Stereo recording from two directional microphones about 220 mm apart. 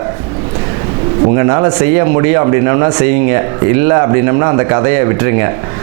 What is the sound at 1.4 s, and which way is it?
A man's voice, 20° right (ahead or behind).